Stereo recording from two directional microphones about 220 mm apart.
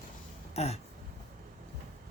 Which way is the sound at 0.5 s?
30° left (ahead or behind).